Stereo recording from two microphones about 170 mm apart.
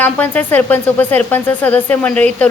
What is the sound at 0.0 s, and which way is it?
Speech, 10° left (ahead or behind).